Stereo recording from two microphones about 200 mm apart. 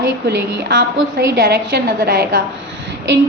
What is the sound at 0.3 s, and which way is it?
A woman's voice, 60° right (ahead or behind).